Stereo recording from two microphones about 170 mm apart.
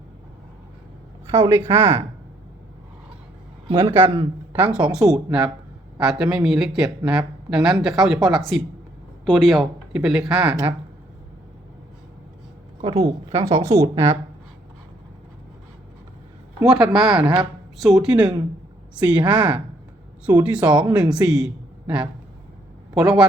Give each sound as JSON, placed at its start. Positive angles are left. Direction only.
{"t": 1.5, "sound": "a woman's voice", "side_deg": -15}
{"t": 3.8, "sound": "a woman's voice", "side_deg": -15}
{"t": 13.0, "sound": "a woman's voice", "side_deg": -20}
{"t": 16.6, "sound": "a woman's voice", "side_deg": -5}